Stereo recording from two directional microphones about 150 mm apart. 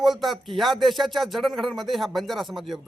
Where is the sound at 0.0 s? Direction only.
Centre (ahead or behind).